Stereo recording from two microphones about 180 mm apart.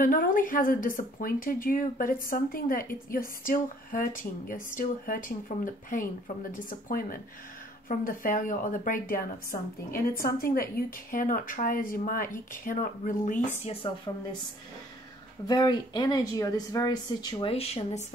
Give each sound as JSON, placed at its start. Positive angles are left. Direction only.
{"t": 0.0, "sound": "speech", "side_deg": 50}
{"t": 15.4, "sound": "speech", "side_deg": 25}